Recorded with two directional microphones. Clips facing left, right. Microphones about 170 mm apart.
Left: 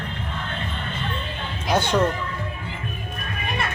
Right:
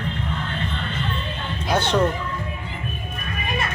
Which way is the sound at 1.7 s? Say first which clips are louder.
Even; 10° left (ahead or behind).